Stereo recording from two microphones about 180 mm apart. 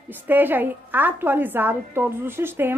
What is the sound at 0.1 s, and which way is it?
A woman's voice, 10° right (ahead or behind).